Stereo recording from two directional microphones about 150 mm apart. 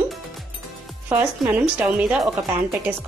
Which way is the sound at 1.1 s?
10° right (ahead or behind).